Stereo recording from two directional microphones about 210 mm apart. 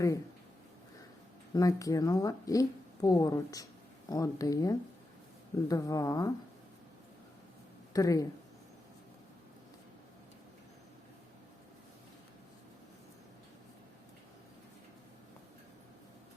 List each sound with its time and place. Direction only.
1.5 s speech: 15° left (ahead or behind)
7.9 s speech: 15° left (ahead or behind)